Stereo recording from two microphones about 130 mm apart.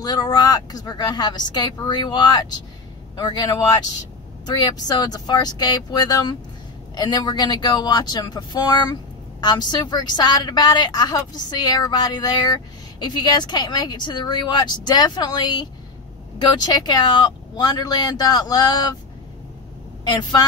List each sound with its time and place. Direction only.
0.0 s a woman's voice: 30° left (ahead or behind)
20.1 s a woman's voice: 35° left (ahead or behind)